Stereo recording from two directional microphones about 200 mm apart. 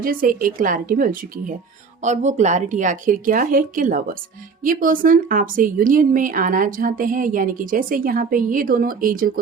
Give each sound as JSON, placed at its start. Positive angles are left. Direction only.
{"t": 0.0, "sound": "speech", "side_deg": -45}